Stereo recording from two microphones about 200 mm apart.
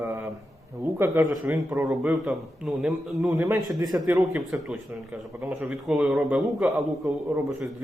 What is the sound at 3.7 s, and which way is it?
Speech, 20° right (ahead or behind).